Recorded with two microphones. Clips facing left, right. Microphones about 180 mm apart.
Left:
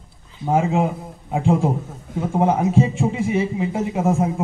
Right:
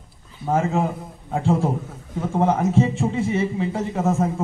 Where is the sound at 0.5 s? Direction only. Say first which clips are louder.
Left 2 dB; 15° left (ahead or behind).